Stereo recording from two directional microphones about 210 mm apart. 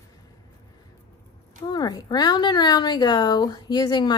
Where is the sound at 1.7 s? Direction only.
20° left (ahead or behind).